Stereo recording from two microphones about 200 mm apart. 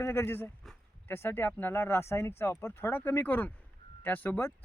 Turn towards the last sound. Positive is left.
turn(degrees=10)  # may be behind; listen again after turning